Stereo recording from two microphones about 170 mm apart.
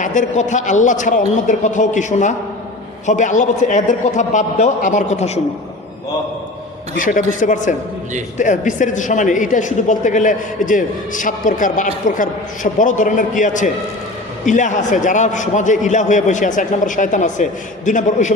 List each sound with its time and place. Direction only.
0.0 s a man's voice: 45° left (ahead or behind)
6.9 s a man's voice: 50° left (ahead or behind)